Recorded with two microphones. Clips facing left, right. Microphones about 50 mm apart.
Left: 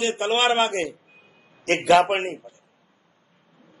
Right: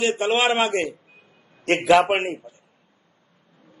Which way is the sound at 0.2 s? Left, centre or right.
Centre.